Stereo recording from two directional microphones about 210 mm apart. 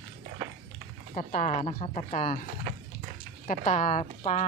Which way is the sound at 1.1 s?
35° left (ahead or behind).